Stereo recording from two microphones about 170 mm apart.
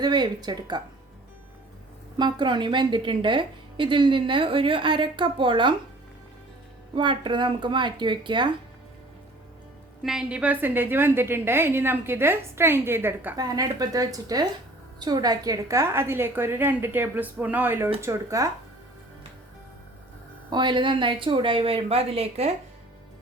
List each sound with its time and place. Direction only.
0.0 s a woman's voice: 25° right (ahead or behind)
2.1 s a woman's voice: 25° right (ahead or behind)
6.9 s a woman's voice: 30° right (ahead or behind)
10.0 s a woman's voice: 5° right (ahead or behind)
20.5 s a woman's voice: 25° right (ahead or behind)